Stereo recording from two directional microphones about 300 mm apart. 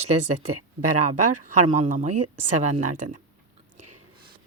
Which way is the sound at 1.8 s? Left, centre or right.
Right.